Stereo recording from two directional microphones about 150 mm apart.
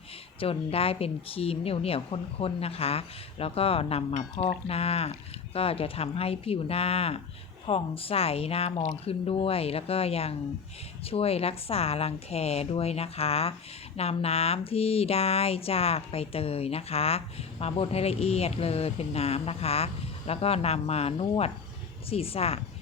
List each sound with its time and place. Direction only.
0.3 s a woman's voice: 40° left (ahead or behind)